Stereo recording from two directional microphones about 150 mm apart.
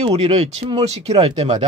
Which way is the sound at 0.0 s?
45° right (ahead or behind).